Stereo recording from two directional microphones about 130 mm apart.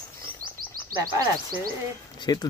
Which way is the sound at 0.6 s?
90° right.